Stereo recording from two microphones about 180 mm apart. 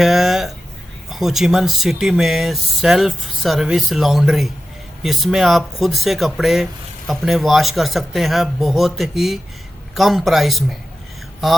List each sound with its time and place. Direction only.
0.0 s speech: centre (ahead or behind)